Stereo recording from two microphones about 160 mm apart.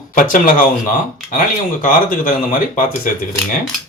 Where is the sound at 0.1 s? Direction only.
55° left (ahead or behind).